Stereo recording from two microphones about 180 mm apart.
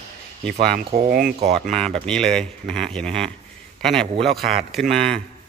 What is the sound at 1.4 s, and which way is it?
Speech, 35° right (ahead or behind).